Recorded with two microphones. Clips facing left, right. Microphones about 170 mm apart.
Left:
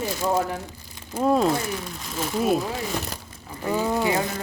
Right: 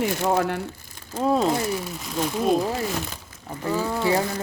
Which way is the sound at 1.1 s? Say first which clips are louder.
Left 1 dB; 5° left (ahead or behind).